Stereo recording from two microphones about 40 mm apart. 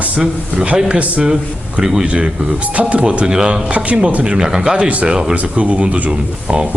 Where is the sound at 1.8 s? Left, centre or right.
Centre.